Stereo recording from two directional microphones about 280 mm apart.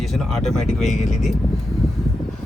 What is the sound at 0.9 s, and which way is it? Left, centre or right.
Speech, left.